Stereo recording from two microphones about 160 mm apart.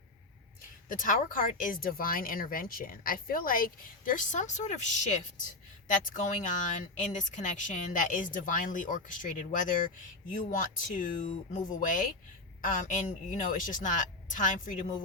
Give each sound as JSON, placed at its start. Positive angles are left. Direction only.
{"t": 0.9, "sound": "speech", "side_deg": 60}